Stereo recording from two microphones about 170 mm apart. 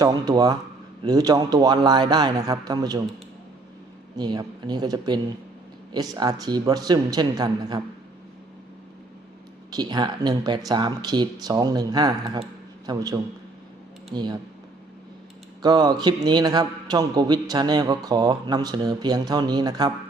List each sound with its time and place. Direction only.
0.0 s speech: 20° right (ahead or behind)
4.2 s speech: 25° right (ahead or behind)
9.6 s a man's voice: 25° right (ahead or behind)
15.6 s speech: 25° right (ahead or behind)